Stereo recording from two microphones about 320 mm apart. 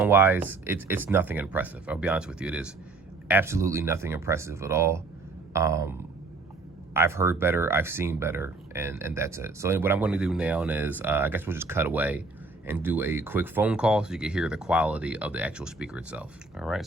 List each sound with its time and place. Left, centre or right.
0.0 s speech: centre